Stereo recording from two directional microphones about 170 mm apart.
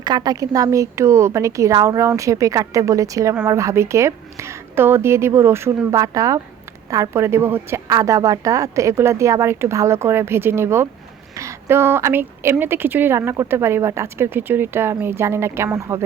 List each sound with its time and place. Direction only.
0.0 s a woman's voice: 25° right (ahead or behind)